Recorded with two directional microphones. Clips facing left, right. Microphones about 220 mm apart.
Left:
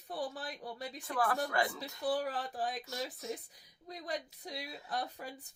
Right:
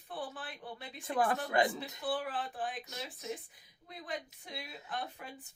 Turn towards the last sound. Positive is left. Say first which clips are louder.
# left 2 dB
turn(degrees=40)  # may be behind; listen again after turning